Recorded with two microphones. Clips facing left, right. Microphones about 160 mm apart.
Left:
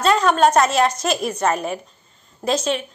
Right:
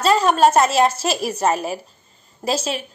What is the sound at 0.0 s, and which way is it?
Speech, 5° right (ahead or behind).